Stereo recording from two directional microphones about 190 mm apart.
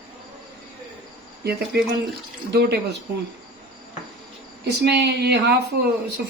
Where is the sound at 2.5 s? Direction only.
60° right (ahead or behind).